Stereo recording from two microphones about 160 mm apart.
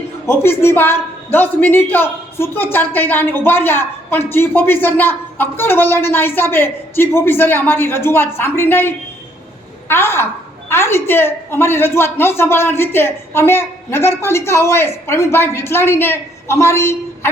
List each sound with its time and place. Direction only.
0.3 s a woman's voice: 15° left (ahead or behind)